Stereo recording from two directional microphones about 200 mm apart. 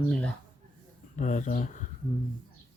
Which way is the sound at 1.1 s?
40° left (ahead or behind).